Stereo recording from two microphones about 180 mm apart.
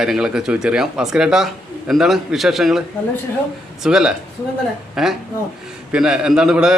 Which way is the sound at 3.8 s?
5° right (ahead or behind).